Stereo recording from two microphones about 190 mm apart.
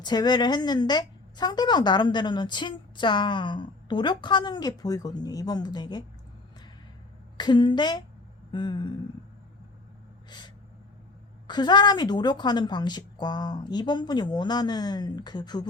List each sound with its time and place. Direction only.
0.0 s a woman's voice: 20° left (ahead or behind)
7.3 s a woman's voice: 25° left (ahead or behind)
10.2 s gasp: 25° left (ahead or behind)
11.4 s a woman's voice: 25° left (ahead or behind)